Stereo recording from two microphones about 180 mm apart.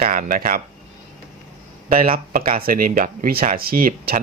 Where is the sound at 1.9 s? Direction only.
50° right (ahead or behind).